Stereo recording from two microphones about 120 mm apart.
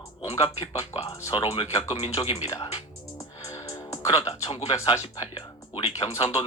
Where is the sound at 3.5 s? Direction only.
30° left (ahead or behind).